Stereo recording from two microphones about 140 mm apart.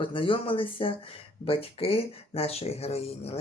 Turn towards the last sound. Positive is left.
turn(degrees=45)  # may be behind; listen again after turning